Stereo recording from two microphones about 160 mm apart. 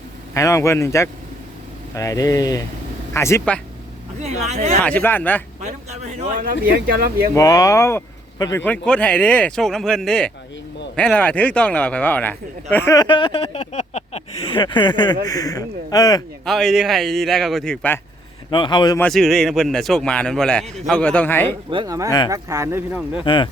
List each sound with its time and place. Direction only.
0.3 s speech: 20° left (ahead or behind)
4.2 s speech: 45° right (ahead or behind)
4.8 s speech: 10° left (ahead or behind)
5.5 s speech: 45° right (ahead or behind); by 7.3 s 70° right (ahead or behind)
7.3 s speech: 20° left (ahead or behind)
8.6 s speech: 5° left (ahead or behind); by 16.2 s 25° left (ahead or behind)
16.5 s a man's voice: centre (ahead or behind)
18.5 s speech: 30° left (ahead or behind)
18.9 s a man's voice: 5° left (ahead or behind)
21.7 s speech: 25° right (ahead or behind)
23.2 s speech: 30° left (ahead or behind)